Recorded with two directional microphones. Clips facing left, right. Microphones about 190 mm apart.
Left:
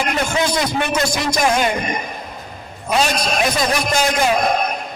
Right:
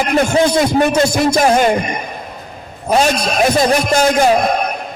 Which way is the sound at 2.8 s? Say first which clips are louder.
Right 4 dB; 40° right (ahead or behind).